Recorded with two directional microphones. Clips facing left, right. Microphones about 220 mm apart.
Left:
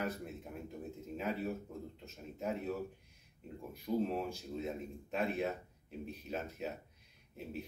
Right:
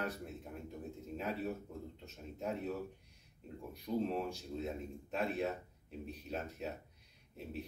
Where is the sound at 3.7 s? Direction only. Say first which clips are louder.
Left 1 dB; centre (ahead or behind).